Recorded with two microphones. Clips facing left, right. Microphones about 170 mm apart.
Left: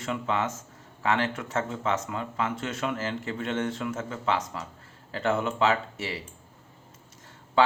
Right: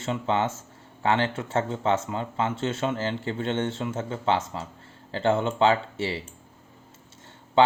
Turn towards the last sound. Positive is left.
turn(degrees=-30)  # may be behind; listen again after turning